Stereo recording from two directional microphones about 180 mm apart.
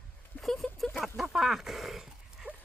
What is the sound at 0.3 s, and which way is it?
Speech, centre (ahead or behind).